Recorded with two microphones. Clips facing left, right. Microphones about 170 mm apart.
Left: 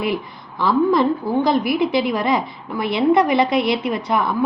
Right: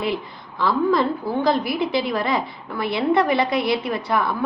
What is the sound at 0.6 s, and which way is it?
A woman's voice, 20° left (ahead or behind).